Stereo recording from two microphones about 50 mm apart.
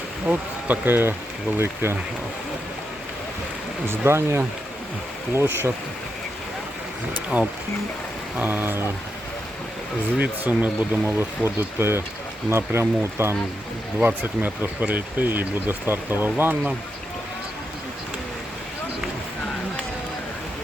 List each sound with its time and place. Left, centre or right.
0.3 s speech: right
1.5 s speech: right
3.8 s speech: right
5.3 s speech: right
7.3 s speech: right
8.4 s speech: right
10.2 s speech: right
11.4 s speech: right
14.2 s speech: right